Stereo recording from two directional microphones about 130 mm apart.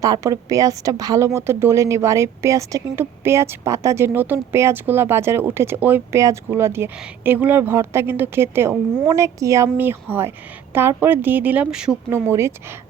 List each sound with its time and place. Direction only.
0.0 s a woman's voice: 25° right (ahead or behind); by 11.9 s 5° right (ahead or behind)
12.1 s speech: 20° right (ahead or behind)